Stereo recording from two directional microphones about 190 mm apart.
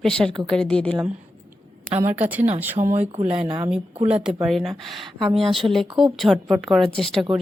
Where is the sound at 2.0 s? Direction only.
10° right (ahead or behind).